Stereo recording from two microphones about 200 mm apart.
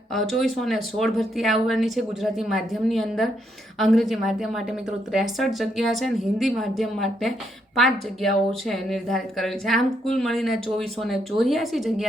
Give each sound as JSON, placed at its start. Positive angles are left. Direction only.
{"t": 0.1, "sound": "speech", "side_deg": 0}